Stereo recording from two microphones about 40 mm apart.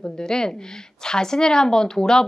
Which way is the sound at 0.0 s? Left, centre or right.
Centre.